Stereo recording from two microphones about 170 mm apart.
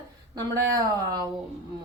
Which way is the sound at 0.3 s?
20° right (ahead or behind).